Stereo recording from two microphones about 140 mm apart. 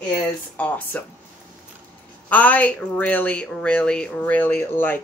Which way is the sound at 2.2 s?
10° left (ahead or behind).